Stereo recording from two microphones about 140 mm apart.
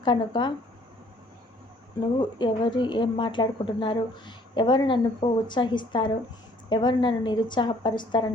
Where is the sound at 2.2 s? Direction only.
35° left (ahead or behind).